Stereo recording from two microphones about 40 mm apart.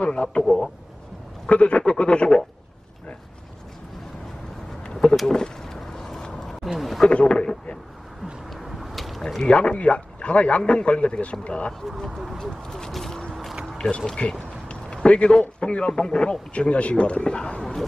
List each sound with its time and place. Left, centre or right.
0.2 s speech: centre
1.5 s a man's voice: left
4.9 s a sound: centre
6.8 s speech: centre
7.2 s speech: centre
8.5 s vehicle: centre
9.5 s a man's voice: left
12.4 s speech: centre
12.9 s a sound: centre; by 15.3 s left
15.6 s a man's voice: left